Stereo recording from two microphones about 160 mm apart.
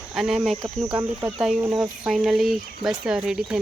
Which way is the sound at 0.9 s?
25° right (ahead or behind).